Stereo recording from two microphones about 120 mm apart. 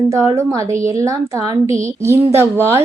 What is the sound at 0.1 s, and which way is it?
A woman's voice, 25° right (ahead or behind).